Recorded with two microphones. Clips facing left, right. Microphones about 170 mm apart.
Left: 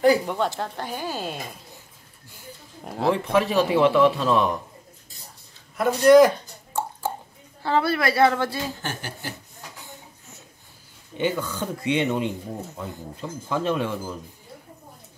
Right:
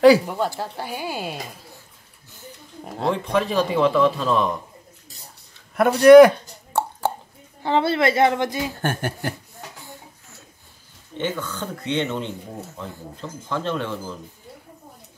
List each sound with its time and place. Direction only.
0.6 s speech: 10° right (ahead or behind)
2.8 s speech: centre (ahead or behind)
5.8 s a sound: 65° right (ahead or behind)
7.6 s a woman's voice: 25° right (ahead or behind)
8.8 s chuckle: 55° right (ahead or behind)
11.1 s speech: 10° left (ahead or behind)